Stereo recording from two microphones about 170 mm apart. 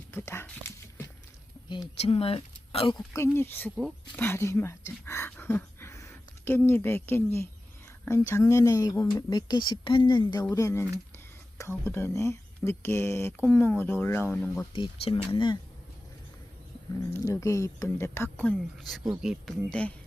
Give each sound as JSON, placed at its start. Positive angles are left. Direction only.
{"t": 0.1, "sound": "a sound", "side_deg": 15}
{"t": 2.0, "sound": "speech", "side_deg": 35}
{"t": 3.1, "sound": "speech", "side_deg": 15}
{"t": 14.7, "sound": "speech", "side_deg": 30}
{"t": 17.1, "sound": "speech", "side_deg": 15}